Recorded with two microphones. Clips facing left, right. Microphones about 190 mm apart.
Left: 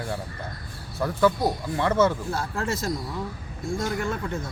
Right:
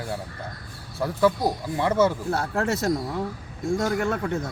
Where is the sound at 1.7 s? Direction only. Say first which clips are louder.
Right 1 dB; 10° right (ahead or behind).